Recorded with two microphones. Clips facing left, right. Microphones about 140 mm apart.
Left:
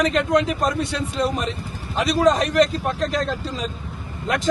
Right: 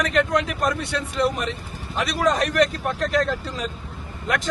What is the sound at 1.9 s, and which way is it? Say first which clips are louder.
A man's voice: left 4 dB; 25° left (ahead or behind).